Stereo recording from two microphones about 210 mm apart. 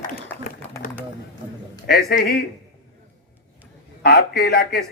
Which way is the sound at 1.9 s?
50° left (ahead or behind).